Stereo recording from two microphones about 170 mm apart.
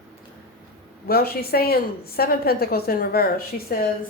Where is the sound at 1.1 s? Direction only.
65° left (ahead or behind).